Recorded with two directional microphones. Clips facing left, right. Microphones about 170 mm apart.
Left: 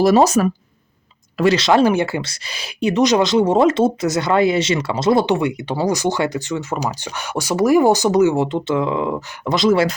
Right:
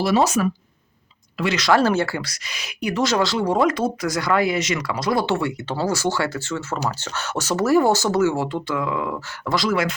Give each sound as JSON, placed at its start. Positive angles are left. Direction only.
{"t": 0.0, "sound": "speech", "side_deg": 45}
{"t": 1.5, "sound": "speech", "side_deg": 20}